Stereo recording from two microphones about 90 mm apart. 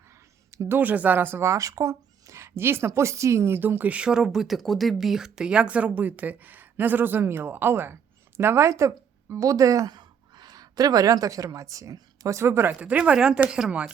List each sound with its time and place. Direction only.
0.5 s speech: 30° right (ahead or behind)
0.8 s a woman's voice: 20° right (ahead or behind); by 12.4 s 40° right (ahead or behind)
12.4 s speech: 30° right (ahead or behind)
12.8 s speech: 15° right (ahead or behind)